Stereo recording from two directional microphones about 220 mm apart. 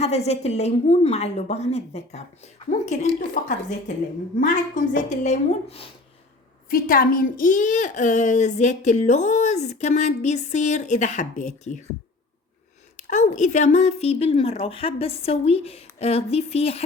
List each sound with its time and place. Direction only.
0.0 s a child's voice: 30° left (ahead or behind)
6.7 s a child's voice: 40° left (ahead or behind)
13.0 s speech: 35° left (ahead or behind)